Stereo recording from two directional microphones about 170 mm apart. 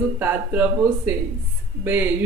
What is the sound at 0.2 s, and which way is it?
Speech, 10° right (ahead or behind).